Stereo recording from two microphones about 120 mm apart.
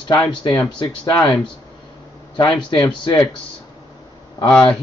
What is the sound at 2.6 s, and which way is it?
Speech, 40° left (ahead or behind).